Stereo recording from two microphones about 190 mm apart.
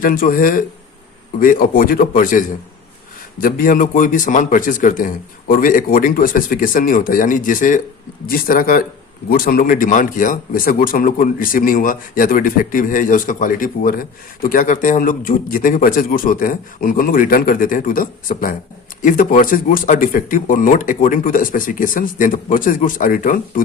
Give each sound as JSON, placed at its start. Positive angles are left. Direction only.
{"t": 0.0, "sound": "speech", "side_deg": 45}
{"t": 3.4, "sound": "speech", "side_deg": 45}